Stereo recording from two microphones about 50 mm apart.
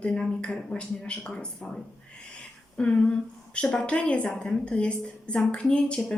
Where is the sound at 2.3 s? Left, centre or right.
Left.